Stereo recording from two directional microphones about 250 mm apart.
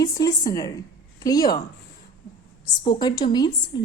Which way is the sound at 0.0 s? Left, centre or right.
Centre.